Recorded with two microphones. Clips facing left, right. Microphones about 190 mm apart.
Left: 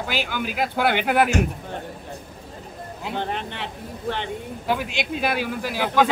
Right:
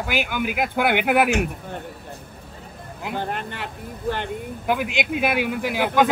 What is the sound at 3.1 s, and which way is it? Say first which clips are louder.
Speech: even; 10° right (ahead or behind).